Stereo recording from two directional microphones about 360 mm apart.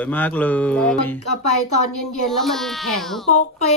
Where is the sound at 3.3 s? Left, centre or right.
Centre.